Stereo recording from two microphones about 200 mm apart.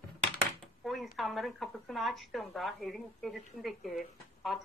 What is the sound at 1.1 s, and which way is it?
A woman's voice, centre (ahead or behind).